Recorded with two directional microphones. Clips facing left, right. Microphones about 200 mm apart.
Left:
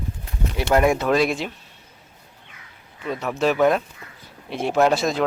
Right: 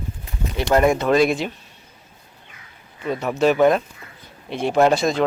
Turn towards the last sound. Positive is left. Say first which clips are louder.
# right 2 dB
turn(degrees=0)  # may be behind; listen again after turning